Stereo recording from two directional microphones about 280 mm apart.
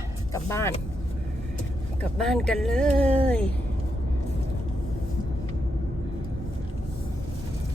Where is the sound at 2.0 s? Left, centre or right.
Centre.